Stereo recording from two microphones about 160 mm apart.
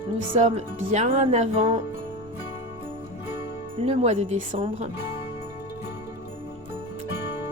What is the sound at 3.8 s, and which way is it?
Speech, 40° right (ahead or behind).